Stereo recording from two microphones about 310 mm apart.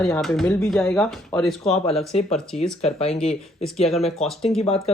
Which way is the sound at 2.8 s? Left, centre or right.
Centre.